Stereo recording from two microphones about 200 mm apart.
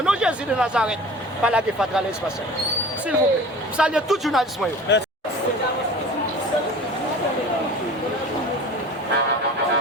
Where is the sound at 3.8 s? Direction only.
5° right (ahead or behind).